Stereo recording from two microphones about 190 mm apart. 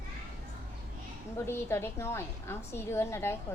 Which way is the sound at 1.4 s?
15° left (ahead or behind).